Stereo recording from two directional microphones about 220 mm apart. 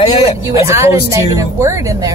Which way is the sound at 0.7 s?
10° right (ahead or behind).